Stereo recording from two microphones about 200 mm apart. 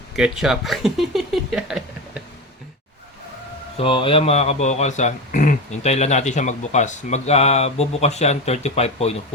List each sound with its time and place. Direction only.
0.2 s speech: centre (ahead or behind)
3.8 s speech: 25° left (ahead or behind)